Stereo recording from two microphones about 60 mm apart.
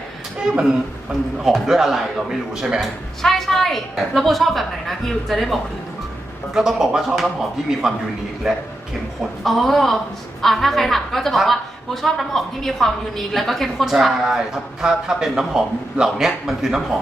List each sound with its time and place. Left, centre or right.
1.4 s speech: centre
3.2 s a woman's voice: centre